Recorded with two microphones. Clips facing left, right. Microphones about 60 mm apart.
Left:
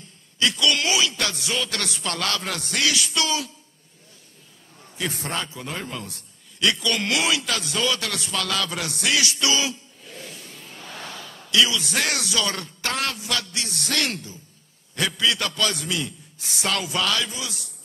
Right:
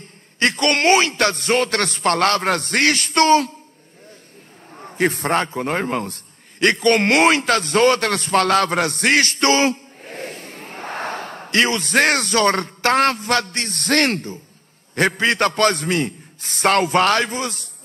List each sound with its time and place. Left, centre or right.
0.0 s a man's voice: right
4.7 s a man's voice: right